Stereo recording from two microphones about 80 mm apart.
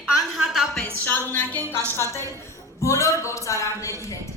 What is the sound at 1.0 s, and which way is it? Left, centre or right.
Speech, left.